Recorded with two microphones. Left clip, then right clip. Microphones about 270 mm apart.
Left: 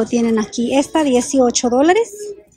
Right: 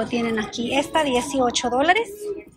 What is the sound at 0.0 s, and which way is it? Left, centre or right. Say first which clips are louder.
Speech: left 6 dB; centre.